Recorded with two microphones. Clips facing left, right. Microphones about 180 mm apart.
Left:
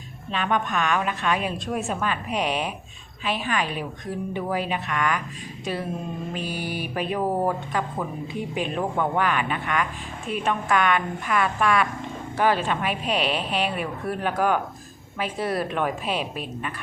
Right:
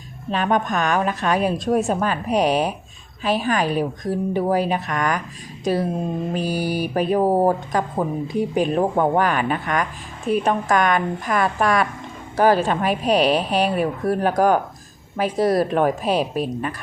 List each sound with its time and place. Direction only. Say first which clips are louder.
0.3 s speech: right 5 dB; 40° right (ahead or behind)